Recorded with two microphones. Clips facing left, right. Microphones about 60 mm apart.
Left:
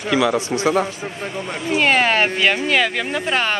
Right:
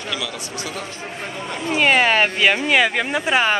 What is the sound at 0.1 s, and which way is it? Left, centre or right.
Speech, left.